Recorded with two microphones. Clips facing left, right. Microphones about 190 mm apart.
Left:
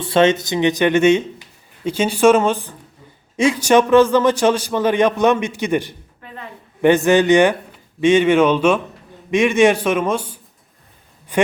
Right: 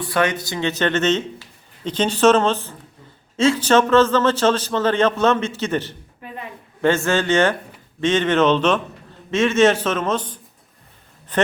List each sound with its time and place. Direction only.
0.0 s speech: 25° left (ahead or behind)